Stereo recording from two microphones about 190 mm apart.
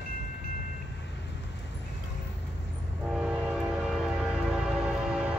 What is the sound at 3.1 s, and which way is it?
Train, 5° right (ahead or behind).